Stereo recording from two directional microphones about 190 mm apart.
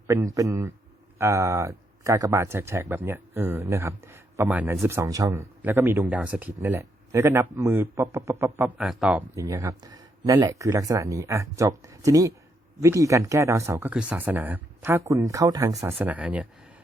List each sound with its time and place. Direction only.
0.1 s speech: 15° right (ahead or behind)
9.3 s speech: 15° right (ahead or behind)